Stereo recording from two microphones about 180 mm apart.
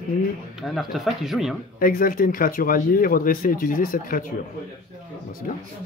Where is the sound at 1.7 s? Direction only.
50° left (ahead or behind).